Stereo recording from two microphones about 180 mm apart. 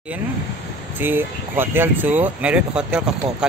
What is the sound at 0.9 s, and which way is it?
Speech, 10° right (ahead or behind).